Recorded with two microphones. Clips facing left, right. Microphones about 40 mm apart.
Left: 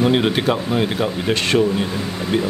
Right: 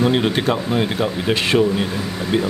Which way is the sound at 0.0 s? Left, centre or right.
Centre.